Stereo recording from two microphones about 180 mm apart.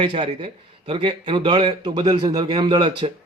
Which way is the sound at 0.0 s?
30° right (ahead or behind).